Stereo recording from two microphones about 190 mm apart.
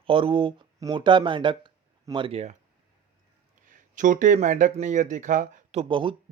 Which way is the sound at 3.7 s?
40° right (ahead or behind).